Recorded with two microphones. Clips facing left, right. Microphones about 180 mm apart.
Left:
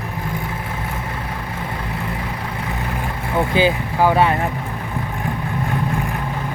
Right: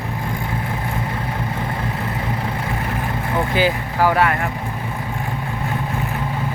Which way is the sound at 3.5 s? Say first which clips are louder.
Left 2 dB; 20° left (ahead or behind).